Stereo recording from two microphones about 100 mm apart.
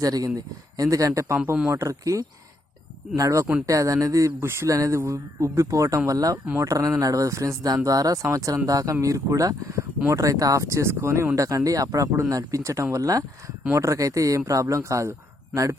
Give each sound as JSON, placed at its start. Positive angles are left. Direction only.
{"t": 0.0, "sound": "speech", "side_deg": -40}